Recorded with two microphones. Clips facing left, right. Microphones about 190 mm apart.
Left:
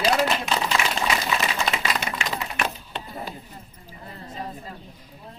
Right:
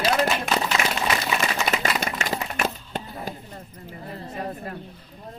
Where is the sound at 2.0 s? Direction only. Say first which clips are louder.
Right 2 dB; 40° right (ahead or behind).